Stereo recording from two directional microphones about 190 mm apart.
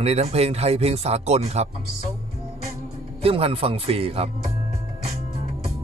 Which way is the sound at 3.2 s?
30° right (ahead or behind).